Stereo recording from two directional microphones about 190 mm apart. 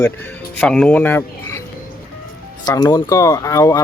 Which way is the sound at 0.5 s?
5° left (ahead or behind).